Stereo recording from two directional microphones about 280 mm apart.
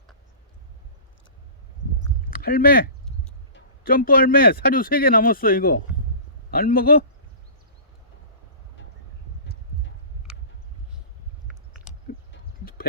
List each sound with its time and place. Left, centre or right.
2.4 s speech: left